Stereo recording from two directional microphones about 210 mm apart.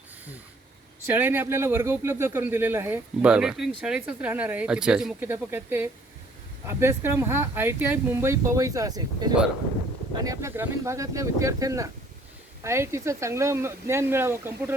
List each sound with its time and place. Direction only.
1.0 s speech: 10° right (ahead or behind)